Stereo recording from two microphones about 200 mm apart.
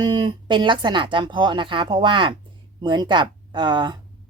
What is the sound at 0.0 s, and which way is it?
A woman's voice, 20° right (ahead or behind).